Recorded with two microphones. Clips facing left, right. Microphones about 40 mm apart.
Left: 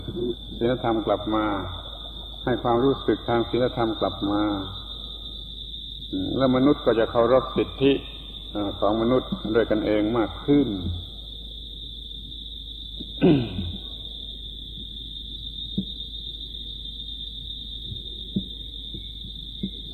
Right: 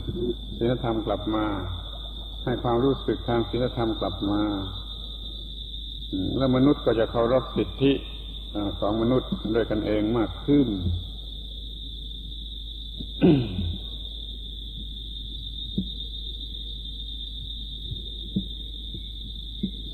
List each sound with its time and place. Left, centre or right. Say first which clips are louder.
0.0 s a sound: left 1 dB; centre
1.4 s a man's voice: left 3 dB; centre
2.6 s a man's voice: left 2 dB; centre
6.1 s a man's voice: left 2 dB; centre
7.5 s a man's voice: left 2 dB; centre
13.0 s a sound: left 1 dB; centre
18.3 s music: left 1 dB; centre
19.6 s music: right 1 dB; centre